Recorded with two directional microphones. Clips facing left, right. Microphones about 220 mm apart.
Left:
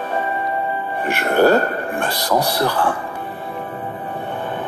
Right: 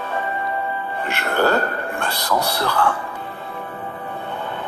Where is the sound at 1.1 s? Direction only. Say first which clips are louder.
Left 5 dB; 15° left (ahead or behind).